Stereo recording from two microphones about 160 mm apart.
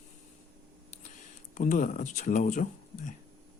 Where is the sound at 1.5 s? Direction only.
50° left (ahead or behind).